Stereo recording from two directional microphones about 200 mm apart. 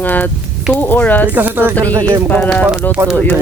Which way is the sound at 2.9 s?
5° right (ahead or behind).